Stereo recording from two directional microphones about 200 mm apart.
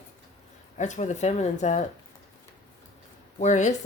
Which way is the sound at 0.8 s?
35° left (ahead or behind).